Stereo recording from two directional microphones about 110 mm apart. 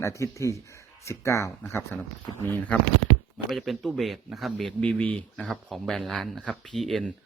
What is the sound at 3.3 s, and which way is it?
Speech, centre (ahead or behind).